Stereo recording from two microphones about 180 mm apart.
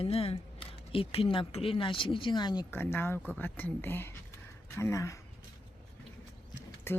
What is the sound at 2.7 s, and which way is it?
Speech, 10° left (ahead or behind).